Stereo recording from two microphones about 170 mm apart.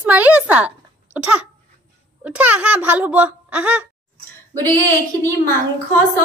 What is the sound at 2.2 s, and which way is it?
Speech, 10° right (ahead or behind).